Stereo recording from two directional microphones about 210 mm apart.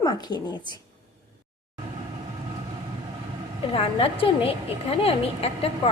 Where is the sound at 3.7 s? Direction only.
25° left (ahead or behind).